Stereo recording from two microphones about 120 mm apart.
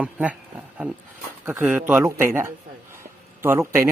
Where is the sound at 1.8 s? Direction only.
15° right (ahead or behind).